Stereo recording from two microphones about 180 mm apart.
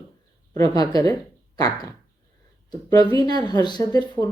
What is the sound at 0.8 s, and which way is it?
Speech, 20° left (ahead or behind).